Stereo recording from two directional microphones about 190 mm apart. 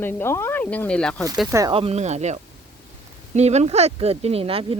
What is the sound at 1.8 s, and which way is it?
Speech, 35° right (ahead or behind).